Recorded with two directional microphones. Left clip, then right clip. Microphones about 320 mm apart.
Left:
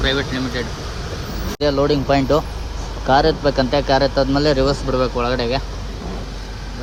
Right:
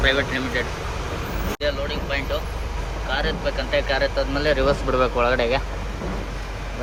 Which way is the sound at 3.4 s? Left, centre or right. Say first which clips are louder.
Left 6 dB; centre.